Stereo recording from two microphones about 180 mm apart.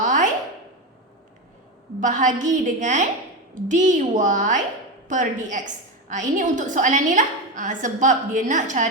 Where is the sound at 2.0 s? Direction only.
45° right (ahead or behind).